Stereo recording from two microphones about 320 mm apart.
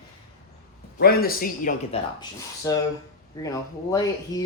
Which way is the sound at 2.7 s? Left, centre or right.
Centre.